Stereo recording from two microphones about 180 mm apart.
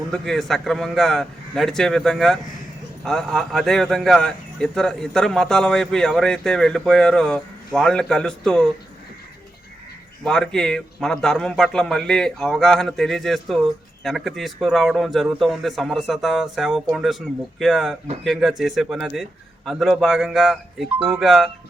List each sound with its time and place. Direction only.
0.1 s a man's voice: centre (ahead or behind)
10.2 s a man's voice: 5° left (ahead or behind)